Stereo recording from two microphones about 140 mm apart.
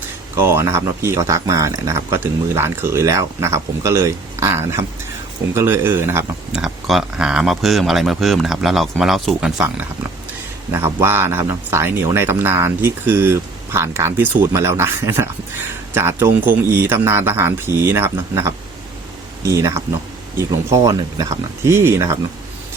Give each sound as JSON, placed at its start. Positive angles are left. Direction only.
{"t": 0.3, "sound": "speech", "side_deg": -20}
{"t": 6.6, "sound": "speech", "side_deg": 0}
{"t": 10.7, "sound": "speech", "side_deg": -15}